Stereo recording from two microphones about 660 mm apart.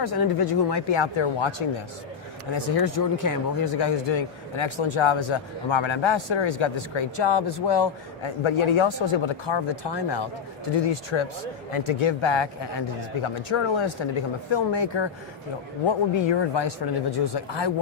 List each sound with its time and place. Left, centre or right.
0.0 s speech: left
2.6 s speech: left